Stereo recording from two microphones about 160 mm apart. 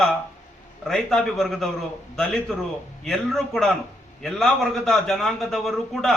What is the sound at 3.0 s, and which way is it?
A man's voice, centre (ahead or behind).